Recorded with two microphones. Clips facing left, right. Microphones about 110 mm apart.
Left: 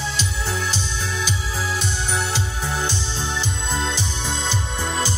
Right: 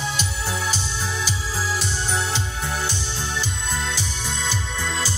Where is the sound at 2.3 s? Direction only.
15° left (ahead or behind).